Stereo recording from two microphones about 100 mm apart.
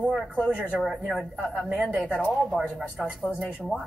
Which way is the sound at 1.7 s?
10° right (ahead or behind).